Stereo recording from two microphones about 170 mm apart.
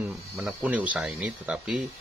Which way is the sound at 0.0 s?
10° right (ahead or behind).